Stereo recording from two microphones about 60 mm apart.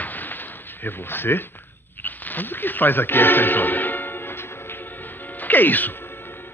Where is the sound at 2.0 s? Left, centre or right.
Left.